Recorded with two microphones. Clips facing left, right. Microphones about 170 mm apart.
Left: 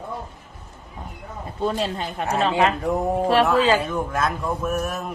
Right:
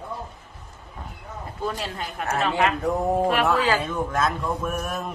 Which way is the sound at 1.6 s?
25° left (ahead or behind).